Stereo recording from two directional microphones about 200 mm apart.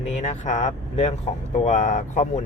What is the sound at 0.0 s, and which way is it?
Speech, 35° left (ahead or behind).